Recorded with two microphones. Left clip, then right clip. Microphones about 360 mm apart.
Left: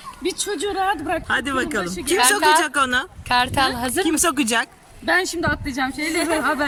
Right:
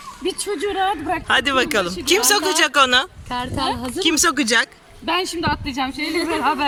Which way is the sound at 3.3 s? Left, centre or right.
Left.